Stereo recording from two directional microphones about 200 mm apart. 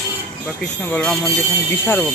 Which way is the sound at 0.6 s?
5° left (ahead or behind).